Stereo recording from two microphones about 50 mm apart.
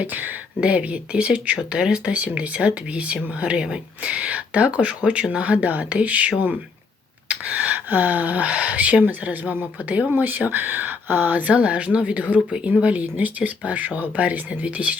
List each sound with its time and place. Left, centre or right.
0.0 s speech: right
12.5 s speech: centre
12.8 s speech: right